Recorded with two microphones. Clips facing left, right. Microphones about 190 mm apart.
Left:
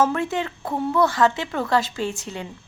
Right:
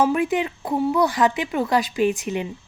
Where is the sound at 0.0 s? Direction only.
15° right (ahead or behind).